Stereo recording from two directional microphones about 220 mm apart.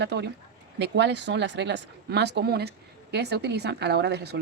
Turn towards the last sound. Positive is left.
turn(degrees=-50)  # may be behind; listen again after turning